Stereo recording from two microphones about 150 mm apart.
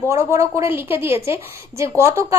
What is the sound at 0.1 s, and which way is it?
A woman's voice, 20° right (ahead or behind).